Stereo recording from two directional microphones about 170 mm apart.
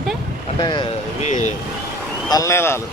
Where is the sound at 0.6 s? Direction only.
30° left (ahead or behind).